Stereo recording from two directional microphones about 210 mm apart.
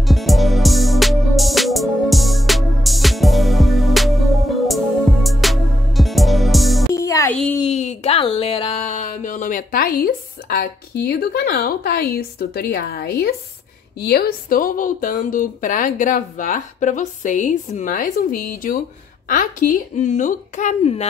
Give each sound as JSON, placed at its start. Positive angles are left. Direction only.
{"t": 0.0, "sound": "music", "side_deg": 0}
{"t": 6.9, "sound": "music", "side_deg": 15}
{"t": 7.5, "sound": "speech", "side_deg": 30}